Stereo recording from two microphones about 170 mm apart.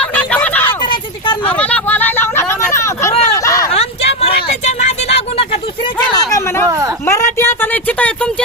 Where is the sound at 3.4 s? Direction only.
20° left (ahead or behind).